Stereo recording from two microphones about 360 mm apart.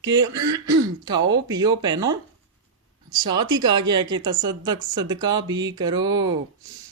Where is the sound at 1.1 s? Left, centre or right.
Right.